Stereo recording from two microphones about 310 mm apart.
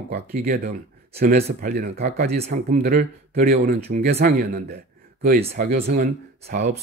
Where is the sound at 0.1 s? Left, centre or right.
Right.